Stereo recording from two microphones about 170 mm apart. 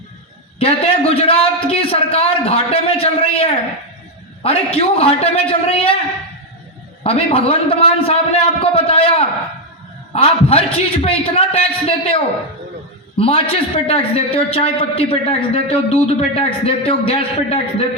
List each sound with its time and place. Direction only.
0.6 s a man's voice: 35° left (ahead or behind)
7.0 s a man's voice: 35° left (ahead or behind)